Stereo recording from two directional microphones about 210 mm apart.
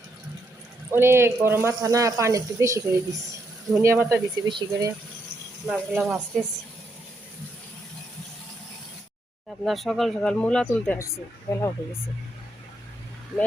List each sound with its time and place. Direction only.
0.9 s speech: 10° right (ahead or behind)
5.6 s speech: centre (ahead or behind)
9.6 s speech: centre (ahead or behind); by 11.6 s 15° left (ahead or behind)